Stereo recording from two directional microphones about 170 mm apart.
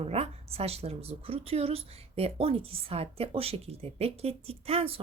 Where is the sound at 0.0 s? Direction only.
35° right (ahead or behind).